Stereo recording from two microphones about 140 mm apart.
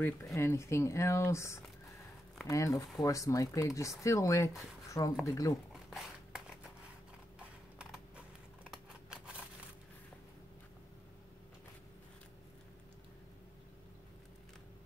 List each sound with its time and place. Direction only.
0.0 s speech: 20° left (ahead or behind)
4.8 s a sound: 25° left (ahead or behind)
5.2 s speech: 25° left (ahead or behind)
7.3 s clip-clop: 5° right (ahead or behind)
8.6 s scissors: 5° right (ahead or behind)